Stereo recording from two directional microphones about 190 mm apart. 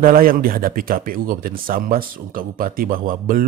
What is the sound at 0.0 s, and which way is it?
Speech, 50° right (ahead or behind).